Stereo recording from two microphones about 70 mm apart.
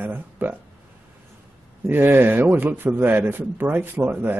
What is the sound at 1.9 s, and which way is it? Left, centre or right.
A man's voice, right.